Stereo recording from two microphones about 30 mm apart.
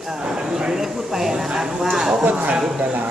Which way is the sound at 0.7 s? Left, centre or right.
Centre.